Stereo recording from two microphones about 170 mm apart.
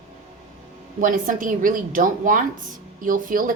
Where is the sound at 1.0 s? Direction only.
50° right (ahead or behind).